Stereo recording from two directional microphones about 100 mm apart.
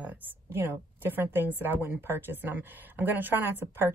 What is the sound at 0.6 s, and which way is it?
A woman's voice, 20° right (ahead or behind).